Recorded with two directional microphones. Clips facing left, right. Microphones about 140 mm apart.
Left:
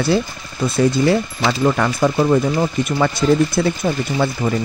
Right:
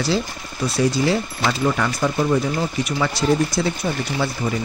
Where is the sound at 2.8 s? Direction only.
50° left (ahead or behind).